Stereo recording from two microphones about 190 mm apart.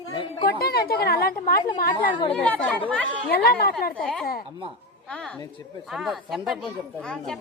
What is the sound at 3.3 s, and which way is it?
Speech, 55° left (ahead or behind).